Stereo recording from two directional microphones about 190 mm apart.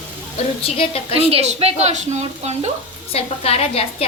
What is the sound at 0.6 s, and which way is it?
Speech, 30° left (ahead or behind).